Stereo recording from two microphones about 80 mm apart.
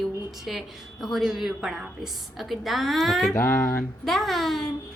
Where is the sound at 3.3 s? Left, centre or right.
Left.